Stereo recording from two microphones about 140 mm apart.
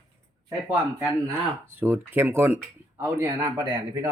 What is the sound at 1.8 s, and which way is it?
Speech, 15° right (ahead or behind).